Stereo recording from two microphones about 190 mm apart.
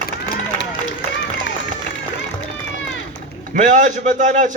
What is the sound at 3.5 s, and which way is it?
A man's voice, 40° right (ahead or behind).